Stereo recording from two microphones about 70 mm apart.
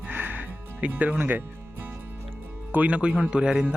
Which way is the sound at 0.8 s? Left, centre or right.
Centre.